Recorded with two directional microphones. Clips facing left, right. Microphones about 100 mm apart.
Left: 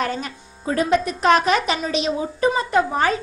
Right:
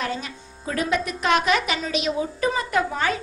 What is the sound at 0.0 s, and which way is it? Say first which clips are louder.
Speech: left 4 dB; 45° left (ahead or behind).